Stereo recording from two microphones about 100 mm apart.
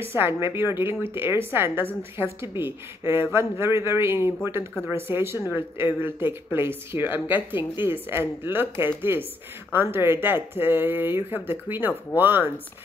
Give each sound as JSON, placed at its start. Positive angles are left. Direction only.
{"t": 0.1, "sound": "speech", "side_deg": -25}